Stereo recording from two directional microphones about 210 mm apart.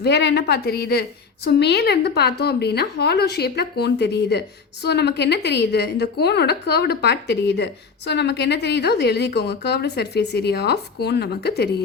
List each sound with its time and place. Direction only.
0.0 s a woman's voice: 55° left (ahead or behind)